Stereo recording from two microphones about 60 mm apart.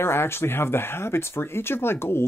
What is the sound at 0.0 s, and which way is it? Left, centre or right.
Speech, left.